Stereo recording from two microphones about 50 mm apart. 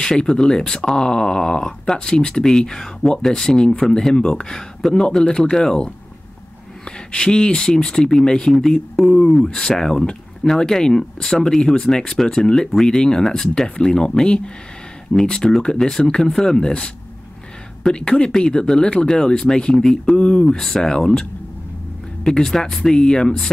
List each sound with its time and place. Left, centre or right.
0.0 s speech: centre
7.1 s speech: centre
20.4 s speech: centre